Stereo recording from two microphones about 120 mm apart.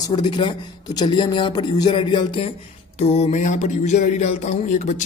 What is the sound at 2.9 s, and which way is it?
Speech, 60° left (ahead or behind).